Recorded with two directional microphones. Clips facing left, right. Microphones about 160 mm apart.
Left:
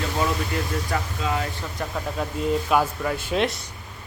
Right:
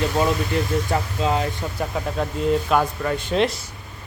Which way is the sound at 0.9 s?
25° right (ahead or behind).